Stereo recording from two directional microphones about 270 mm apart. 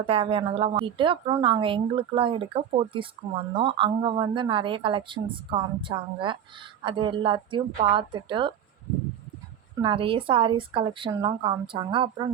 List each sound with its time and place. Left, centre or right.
0.0 s a woman's voice: right
9.8 s a woman's voice: centre